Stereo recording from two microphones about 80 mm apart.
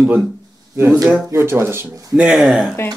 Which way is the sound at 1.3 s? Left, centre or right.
Right.